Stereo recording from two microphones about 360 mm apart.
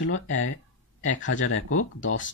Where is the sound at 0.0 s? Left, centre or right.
Left.